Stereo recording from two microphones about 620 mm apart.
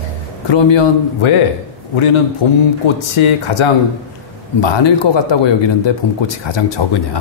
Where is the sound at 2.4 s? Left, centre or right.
Left.